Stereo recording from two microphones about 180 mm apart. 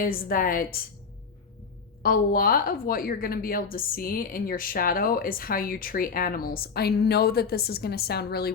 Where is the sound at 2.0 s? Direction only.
55° left (ahead or behind).